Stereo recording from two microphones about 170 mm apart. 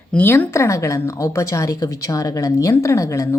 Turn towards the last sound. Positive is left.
turn(degrees=20)  # may be behind; listen again after turning